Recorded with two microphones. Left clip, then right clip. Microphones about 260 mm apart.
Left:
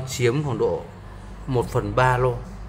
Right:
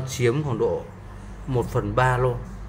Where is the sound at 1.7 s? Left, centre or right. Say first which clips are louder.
Left 2 dB; centre.